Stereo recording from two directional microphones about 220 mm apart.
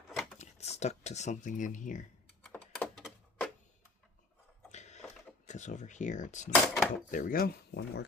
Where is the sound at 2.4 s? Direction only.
5° left (ahead or behind).